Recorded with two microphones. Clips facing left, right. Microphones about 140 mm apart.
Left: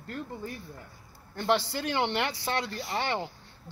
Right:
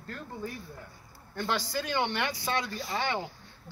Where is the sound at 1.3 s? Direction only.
25° left (ahead or behind).